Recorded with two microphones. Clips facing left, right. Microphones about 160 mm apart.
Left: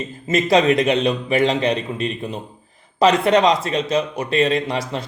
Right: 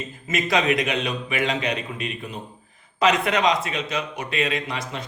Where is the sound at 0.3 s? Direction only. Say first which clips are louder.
Left 6 dB; 30° left (ahead or behind).